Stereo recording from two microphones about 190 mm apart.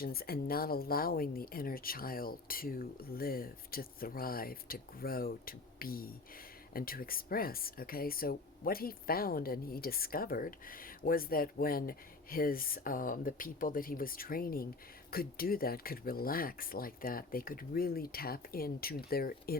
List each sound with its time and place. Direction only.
0.0 s speech: 50° left (ahead or behind)